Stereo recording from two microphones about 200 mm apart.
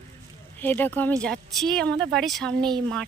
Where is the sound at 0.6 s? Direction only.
10° left (ahead or behind).